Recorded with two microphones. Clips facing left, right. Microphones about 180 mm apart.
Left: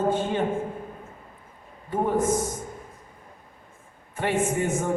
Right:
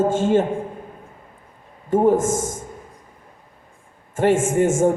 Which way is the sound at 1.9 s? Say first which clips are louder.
Right 7 dB; 45° right (ahead or behind).